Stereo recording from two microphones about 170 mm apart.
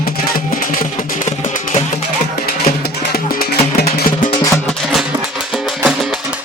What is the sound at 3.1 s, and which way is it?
Music, 65° left (ahead or behind).